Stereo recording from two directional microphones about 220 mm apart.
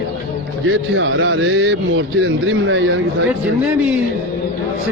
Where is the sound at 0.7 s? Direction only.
60° right (ahead or behind).